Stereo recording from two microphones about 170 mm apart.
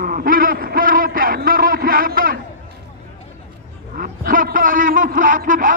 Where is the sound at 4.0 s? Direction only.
55° right (ahead or behind).